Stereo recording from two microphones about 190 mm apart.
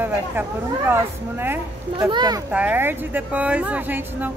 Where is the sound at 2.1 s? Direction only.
25° right (ahead or behind).